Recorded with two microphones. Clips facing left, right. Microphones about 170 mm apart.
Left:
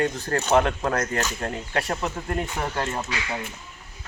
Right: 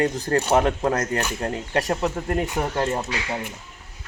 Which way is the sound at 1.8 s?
40° right (ahead or behind).